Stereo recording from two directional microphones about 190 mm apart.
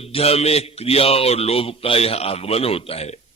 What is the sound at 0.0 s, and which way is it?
A man's voice, 30° left (ahead or behind).